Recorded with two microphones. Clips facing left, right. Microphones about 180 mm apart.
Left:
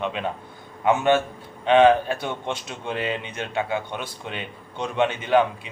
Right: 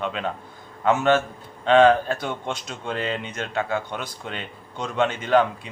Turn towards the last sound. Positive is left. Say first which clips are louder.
# even
turn(degrees=15)  # may be behind; listen again after turning